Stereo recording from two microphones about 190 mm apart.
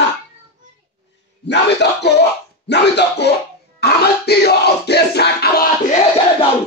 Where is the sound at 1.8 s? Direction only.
60° left (ahead or behind).